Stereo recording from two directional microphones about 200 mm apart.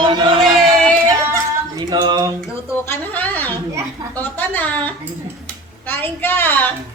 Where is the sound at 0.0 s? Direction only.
25° right (ahead or behind).